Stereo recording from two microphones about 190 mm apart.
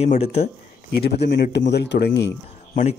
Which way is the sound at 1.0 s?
60° left (ahead or behind).